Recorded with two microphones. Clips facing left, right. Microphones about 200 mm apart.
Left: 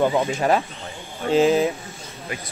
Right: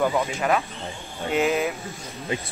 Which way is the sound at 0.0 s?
30° left (ahead or behind).